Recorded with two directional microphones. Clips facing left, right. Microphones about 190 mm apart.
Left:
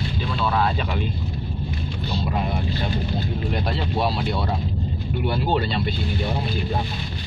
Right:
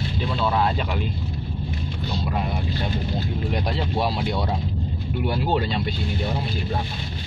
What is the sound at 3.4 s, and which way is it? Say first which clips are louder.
Speech: right 1 dB; 10° right (ahead or behind).